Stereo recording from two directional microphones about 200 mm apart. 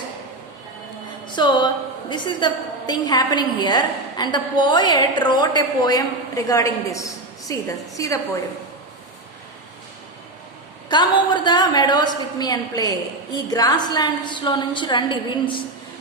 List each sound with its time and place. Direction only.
1.4 s a woman's voice: 20° left (ahead or behind)
10.8 s a woman's voice: 25° left (ahead or behind)